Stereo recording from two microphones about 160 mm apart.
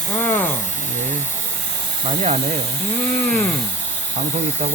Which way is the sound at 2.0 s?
45° right (ahead or behind).